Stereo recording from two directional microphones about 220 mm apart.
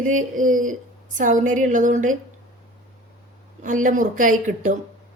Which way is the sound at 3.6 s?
35° right (ahead or behind).